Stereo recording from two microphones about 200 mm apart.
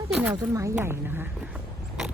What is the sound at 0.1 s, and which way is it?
Speech, 5° right (ahead or behind).